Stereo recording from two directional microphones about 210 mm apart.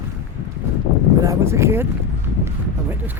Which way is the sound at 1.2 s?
15° right (ahead or behind).